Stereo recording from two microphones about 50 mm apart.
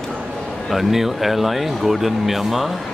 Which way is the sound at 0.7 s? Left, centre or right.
Centre.